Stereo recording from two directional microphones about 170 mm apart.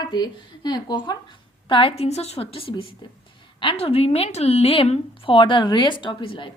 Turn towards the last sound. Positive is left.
turn(degrees=30)  # may be behind; listen again after turning